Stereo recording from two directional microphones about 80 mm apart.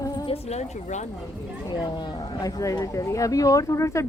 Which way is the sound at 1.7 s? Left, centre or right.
Left.